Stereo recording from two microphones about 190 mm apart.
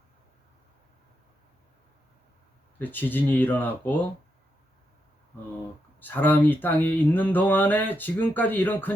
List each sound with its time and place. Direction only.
2.7 s speech: 10° left (ahead or behind)
6.0 s speech: 10° left (ahead or behind)